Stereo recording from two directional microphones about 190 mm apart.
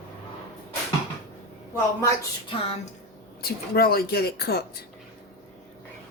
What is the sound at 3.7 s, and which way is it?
Speech, 55° left (ahead or behind).